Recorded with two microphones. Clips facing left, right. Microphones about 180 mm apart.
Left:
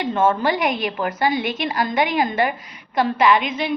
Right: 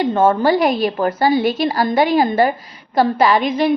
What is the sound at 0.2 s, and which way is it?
A woman's voice, 30° right (ahead or behind).